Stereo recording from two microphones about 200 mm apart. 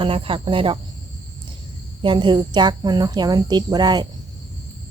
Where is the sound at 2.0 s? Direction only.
25° right (ahead or behind).